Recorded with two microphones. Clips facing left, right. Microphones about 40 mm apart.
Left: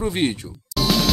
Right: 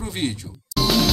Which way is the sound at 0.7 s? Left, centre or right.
Centre.